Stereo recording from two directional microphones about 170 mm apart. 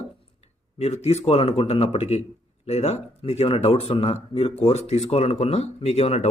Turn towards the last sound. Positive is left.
turn(degrees=40)  # may be behind; listen again after turning